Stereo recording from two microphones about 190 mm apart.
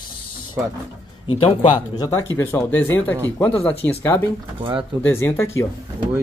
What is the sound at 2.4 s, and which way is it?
Speech, 10° left (ahead or behind).